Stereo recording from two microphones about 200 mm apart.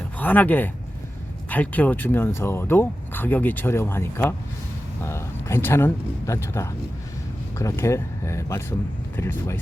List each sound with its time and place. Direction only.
0.2 s speech: 10° left (ahead or behind)